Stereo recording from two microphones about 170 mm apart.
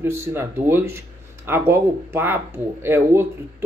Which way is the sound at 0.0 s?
15° right (ahead or behind).